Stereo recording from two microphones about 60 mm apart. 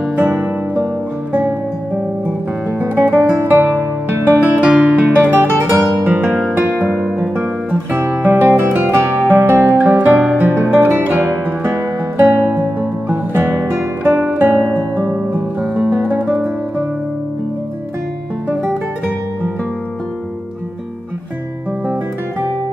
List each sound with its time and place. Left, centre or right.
0.1 s music: right
2.8 s music: right
4.4 s music: right
8.5 s music: right
9.7 s guitar: right
10.3 s music: right
13.1 s guitar: right
15.6 s music: right